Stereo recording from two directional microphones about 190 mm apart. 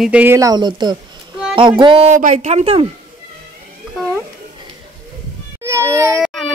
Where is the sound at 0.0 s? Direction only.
5° right (ahead or behind); by 2.9 s 30° right (ahead or behind).